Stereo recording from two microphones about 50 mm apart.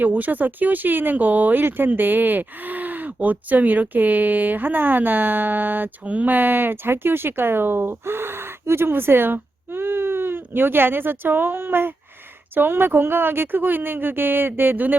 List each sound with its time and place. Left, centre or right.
0.0 s speech: right